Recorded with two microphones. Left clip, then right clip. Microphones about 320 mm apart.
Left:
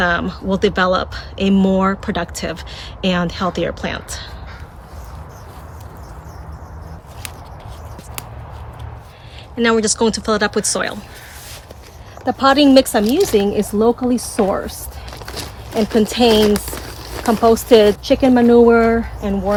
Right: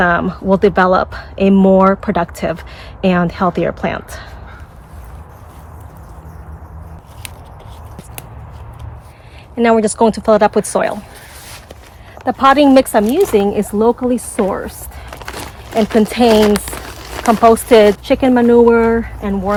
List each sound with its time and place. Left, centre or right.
0.0 s speech: centre
9.6 s speech: centre
12.2 s speech: centre
14.1 s speech: centre
15.2 s a sound: right
17.7 s speech: centre